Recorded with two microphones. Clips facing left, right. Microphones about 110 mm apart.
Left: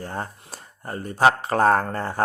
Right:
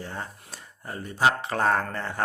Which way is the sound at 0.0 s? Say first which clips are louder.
Left 5 dB; 45° left (ahead or behind).